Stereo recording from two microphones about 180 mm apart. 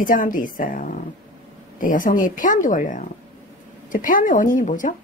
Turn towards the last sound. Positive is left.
turn(degrees=45)  # may be behind; listen again after turning